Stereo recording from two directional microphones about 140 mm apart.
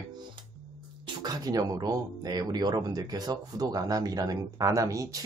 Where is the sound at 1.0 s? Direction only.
30° right (ahead or behind).